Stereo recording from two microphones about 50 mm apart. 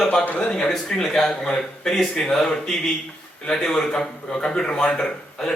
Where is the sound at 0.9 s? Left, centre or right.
Centre.